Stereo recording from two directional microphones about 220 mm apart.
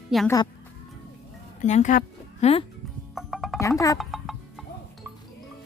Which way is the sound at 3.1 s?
Centre (ahead or behind).